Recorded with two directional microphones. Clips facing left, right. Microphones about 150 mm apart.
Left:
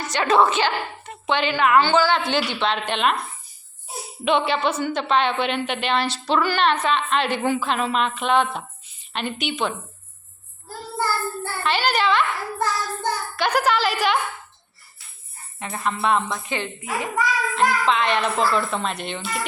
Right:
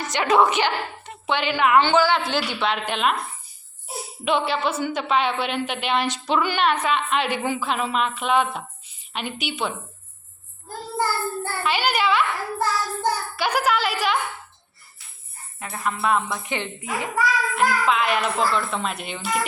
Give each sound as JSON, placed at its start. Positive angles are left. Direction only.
{"t": 0.0, "sound": "a woman's voice", "side_deg": -15}
{"t": 4.2, "sound": "a woman's voice", "side_deg": -5}
{"t": 11.6, "sound": "a woman's voice", "side_deg": -10}
{"t": 15.5, "sound": "a child's voice", "side_deg": -5}
{"t": 16.4, "sound": "a woman's voice", "side_deg": -20}
{"t": 17.2, "sound": "a child's voice", "side_deg": -5}